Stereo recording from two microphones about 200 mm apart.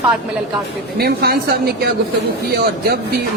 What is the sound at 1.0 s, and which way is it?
A woman's voice, 50° right (ahead or behind).